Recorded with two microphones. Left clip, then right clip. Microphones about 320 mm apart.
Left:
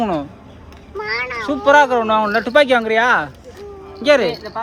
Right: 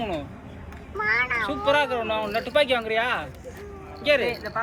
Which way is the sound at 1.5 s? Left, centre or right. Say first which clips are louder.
Left 14 dB; centre.